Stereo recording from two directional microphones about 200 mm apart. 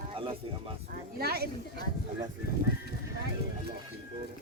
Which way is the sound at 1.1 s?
50° right (ahead or behind).